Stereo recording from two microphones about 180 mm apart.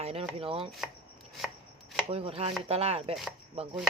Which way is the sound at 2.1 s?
35° right (ahead or behind).